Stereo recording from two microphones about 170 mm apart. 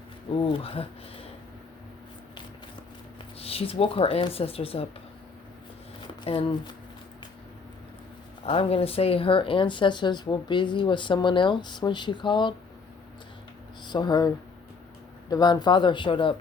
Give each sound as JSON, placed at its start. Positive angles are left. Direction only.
{"t": 0.4, "sound": "speech", "side_deg": 35}
{"t": 3.3, "sound": "speech", "side_deg": 35}
{"t": 6.2, "sound": "speech", "side_deg": 35}
{"t": 8.4, "sound": "speech", "side_deg": 35}
{"t": 13.8, "sound": "speech", "side_deg": 25}